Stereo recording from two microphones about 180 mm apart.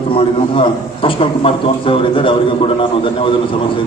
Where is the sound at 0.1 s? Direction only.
30° left (ahead or behind).